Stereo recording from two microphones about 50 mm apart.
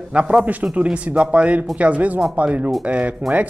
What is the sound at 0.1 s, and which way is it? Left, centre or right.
A man's voice, right.